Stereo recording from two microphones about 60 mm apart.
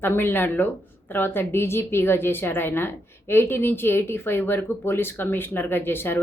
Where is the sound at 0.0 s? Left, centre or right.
Left.